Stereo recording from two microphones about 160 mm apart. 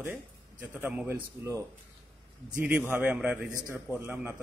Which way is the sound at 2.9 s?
10° right (ahead or behind).